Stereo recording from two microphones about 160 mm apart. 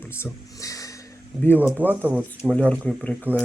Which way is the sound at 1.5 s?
10° right (ahead or behind).